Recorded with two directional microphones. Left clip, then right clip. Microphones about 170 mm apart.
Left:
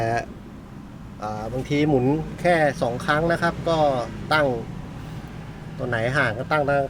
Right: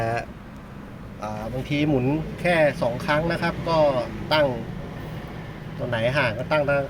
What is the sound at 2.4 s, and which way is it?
Speech, 10° left (ahead or behind).